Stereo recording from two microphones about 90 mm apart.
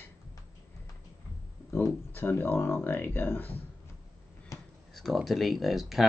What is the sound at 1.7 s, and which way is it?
Speech, 25° left (ahead or behind).